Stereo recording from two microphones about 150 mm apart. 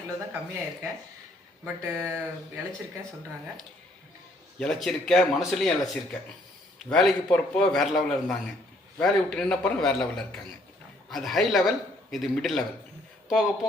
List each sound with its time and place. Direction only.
1.6 s speech: 15° right (ahead or behind)
4.6 s a man's voice: 5° left (ahead or behind)